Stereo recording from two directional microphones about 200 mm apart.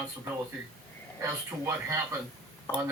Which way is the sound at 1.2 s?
15° right (ahead or behind).